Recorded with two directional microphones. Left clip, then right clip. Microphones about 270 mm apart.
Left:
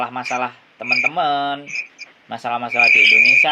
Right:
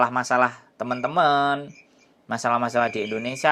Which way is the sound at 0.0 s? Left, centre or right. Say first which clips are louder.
Right 2 dB; right.